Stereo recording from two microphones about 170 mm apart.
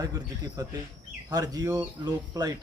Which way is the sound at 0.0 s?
20° right (ahead or behind).